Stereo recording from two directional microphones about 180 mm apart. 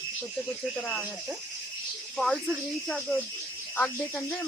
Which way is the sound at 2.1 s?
Centre (ahead or behind).